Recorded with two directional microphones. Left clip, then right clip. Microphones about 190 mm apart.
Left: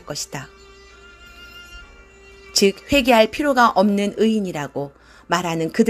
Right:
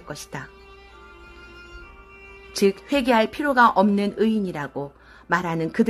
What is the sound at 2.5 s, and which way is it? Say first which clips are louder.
A woman's voice: left 4 dB; 15° left (ahead or behind).